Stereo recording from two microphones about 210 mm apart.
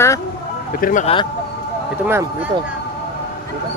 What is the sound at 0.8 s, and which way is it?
Speech, 40° left (ahead or behind).